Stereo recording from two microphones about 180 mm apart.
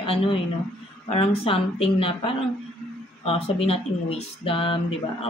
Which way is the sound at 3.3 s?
30° left (ahead or behind).